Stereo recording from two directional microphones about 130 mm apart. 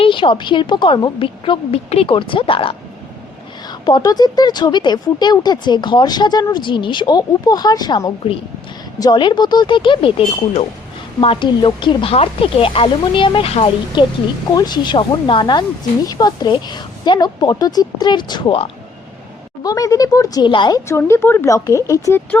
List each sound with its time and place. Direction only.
0.0 s speech: 40° left (ahead or behind)
14.0 s speech: 40° left (ahead or behind)
19.6 s speech: 25° left (ahead or behind)
20.8 s speech: 20° left (ahead or behind)